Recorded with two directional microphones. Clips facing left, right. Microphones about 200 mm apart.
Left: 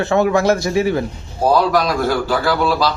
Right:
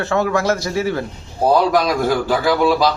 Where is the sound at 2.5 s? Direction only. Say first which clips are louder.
Right 3 dB; 15° right (ahead or behind).